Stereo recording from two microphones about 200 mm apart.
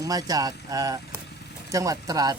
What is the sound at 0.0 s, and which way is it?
Speech, 20° right (ahead or behind).